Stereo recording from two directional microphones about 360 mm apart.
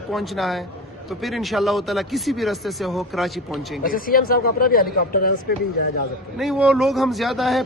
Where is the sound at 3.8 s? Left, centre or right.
Left.